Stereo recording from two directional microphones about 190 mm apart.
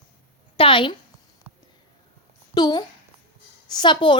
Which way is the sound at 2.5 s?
20° left (ahead or behind).